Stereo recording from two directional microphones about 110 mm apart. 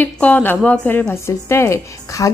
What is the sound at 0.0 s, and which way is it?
A woman's voice, 15° left (ahead or behind).